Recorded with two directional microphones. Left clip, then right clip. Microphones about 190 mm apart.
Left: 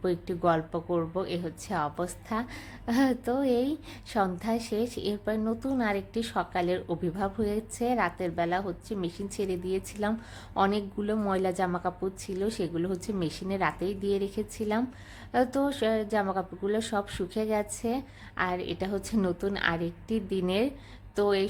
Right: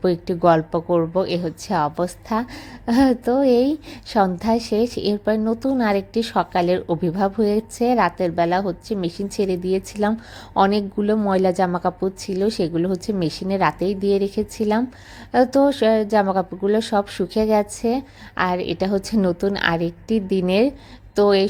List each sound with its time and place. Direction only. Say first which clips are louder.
0.0 s speech: right 10 dB; 25° right (ahead or behind)